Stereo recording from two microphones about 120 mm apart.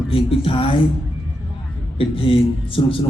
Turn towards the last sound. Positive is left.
turn(degrees=50)  # may be behind; listen again after turning